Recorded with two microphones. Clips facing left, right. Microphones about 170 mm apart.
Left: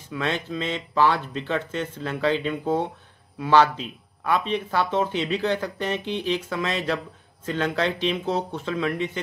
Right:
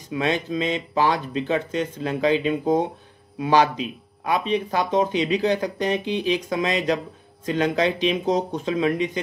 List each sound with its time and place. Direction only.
0.1 s speech: 15° right (ahead or behind)